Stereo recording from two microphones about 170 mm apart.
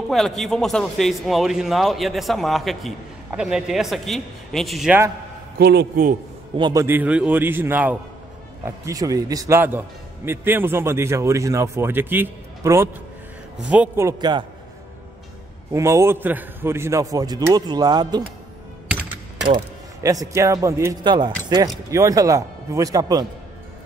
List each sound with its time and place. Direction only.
0.1 s speech: centre (ahead or behind)
5.6 s speech: 75° right (ahead or behind)
6.5 s a man's voice: 25° right (ahead or behind)
15.7 s a man's voice: 15° right (ahead or behind)
20.0 s speech: 20° right (ahead or behind)